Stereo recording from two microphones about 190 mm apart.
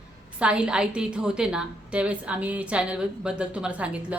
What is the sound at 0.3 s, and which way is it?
A woman's voice, 5° right (ahead or behind).